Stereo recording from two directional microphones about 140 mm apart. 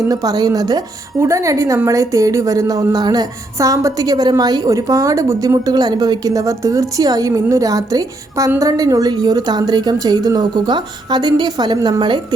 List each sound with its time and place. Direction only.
0.1 s a woman's voice: 25° right (ahead or behind)